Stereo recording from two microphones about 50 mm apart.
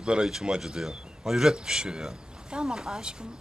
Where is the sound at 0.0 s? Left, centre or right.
Centre.